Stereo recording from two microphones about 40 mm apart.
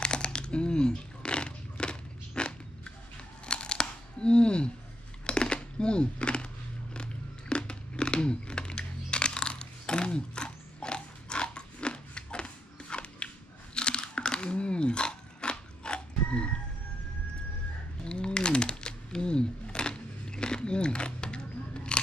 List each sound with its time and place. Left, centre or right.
0.0 s a sound: left
13.7 s crunch: left
18.0 s typing: left
21.9 s chewing: left